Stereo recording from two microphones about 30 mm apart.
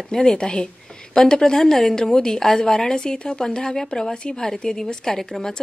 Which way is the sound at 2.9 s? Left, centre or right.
Left.